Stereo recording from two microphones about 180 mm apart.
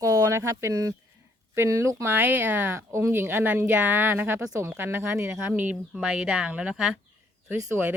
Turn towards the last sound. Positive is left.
turn(degrees=-15)  # may be behind; listen again after turning